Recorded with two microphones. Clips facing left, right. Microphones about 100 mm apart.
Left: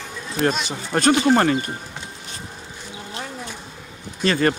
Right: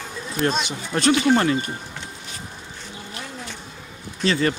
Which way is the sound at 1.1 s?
25° left (ahead or behind).